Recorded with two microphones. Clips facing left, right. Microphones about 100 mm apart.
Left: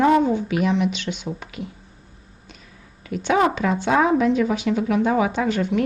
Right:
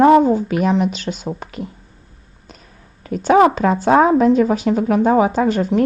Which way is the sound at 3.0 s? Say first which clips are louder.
Right 7 dB; 40° right (ahead or behind).